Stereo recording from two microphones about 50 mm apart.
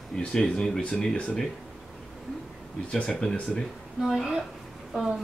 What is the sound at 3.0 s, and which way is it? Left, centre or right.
Speech, centre.